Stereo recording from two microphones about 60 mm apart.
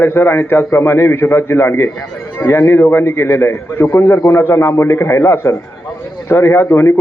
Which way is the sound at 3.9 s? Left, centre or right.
Left.